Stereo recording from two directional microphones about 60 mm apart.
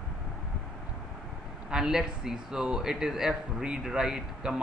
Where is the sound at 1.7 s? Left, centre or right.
Centre.